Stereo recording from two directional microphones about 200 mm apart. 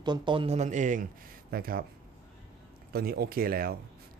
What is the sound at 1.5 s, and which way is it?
Speech, 50° right (ahead or behind).